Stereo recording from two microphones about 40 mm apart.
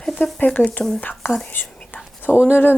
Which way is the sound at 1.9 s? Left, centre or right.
Left.